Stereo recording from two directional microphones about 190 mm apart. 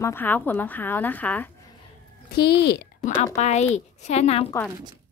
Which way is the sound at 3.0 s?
40° left (ahead or behind).